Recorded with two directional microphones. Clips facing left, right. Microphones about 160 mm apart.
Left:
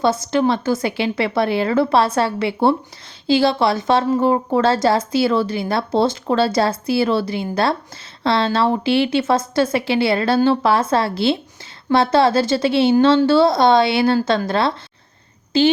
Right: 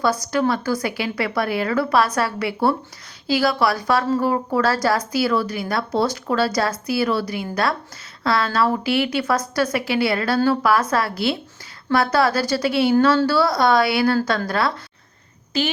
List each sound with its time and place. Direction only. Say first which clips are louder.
0.0 s a woman's voice: left 3 dB; 25° left (ahead or behind)